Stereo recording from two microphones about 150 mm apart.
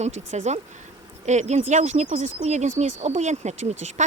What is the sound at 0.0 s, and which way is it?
Speech, 50° right (ahead or behind).